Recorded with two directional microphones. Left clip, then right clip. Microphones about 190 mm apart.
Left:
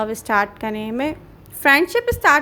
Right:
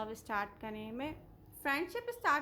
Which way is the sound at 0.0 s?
30° left (ahead or behind).